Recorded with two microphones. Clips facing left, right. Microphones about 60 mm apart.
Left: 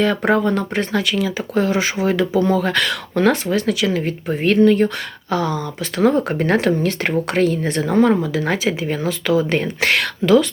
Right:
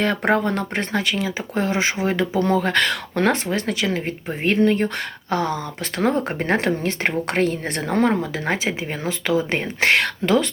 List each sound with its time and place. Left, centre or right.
0.3 s speech: right
7.3 s speech: right